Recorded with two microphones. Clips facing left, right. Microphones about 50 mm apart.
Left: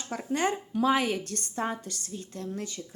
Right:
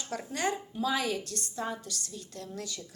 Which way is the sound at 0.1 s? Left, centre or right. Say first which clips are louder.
Left 4 dB; left.